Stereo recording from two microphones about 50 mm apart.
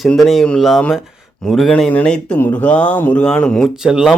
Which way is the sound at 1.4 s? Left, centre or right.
Centre.